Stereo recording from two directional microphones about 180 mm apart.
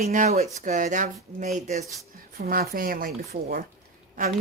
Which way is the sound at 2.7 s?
50° right (ahead or behind).